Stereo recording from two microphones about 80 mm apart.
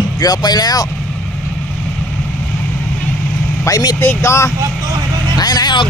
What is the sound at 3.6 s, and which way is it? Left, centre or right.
Speech, left.